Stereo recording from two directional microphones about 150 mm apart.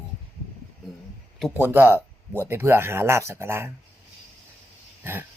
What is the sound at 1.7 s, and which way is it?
Speech, 15° right (ahead or behind).